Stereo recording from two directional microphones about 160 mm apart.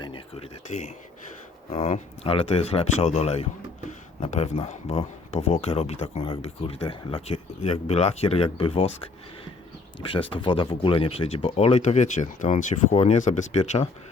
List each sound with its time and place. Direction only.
0.0 s speech: 30° left (ahead or behind)
0.7 s speech: 45° left (ahead or behind)